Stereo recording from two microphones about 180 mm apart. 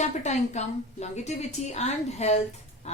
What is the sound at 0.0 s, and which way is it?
A woman's voice, 40° left (ahead or behind).